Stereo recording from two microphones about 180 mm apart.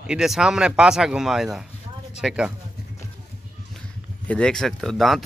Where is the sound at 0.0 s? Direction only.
5° right (ahead or behind).